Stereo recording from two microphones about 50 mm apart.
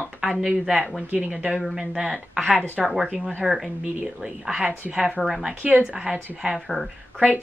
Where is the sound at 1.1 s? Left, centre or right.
Right.